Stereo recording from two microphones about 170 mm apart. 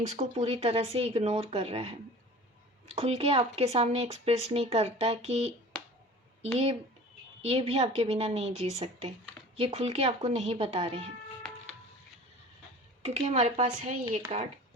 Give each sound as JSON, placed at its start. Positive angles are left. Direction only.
{"t": 0.2, "sound": "speech", "side_deg": -35}
{"t": 7.4, "sound": "speech", "side_deg": -35}
{"t": 11.4, "sound": "music", "side_deg": 5}
{"t": 13.0, "sound": "speech", "side_deg": -40}